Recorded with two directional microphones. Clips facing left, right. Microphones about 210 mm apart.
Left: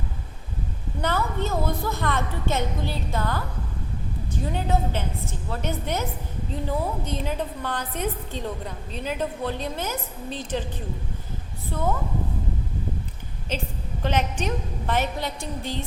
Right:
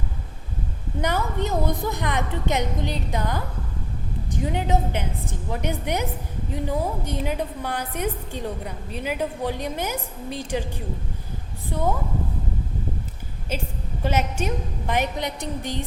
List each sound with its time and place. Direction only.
1.0 s a woman's voice: 15° right (ahead or behind)
13.5 s a woman's voice: 10° right (ahead or behind)